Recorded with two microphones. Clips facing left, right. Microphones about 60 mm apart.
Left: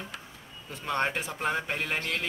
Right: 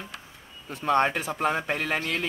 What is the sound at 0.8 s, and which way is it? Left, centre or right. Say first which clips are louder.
Speech: right 6 dB; right.